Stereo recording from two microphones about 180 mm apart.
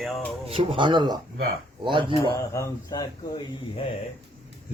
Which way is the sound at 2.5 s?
20° left (ahead or behind).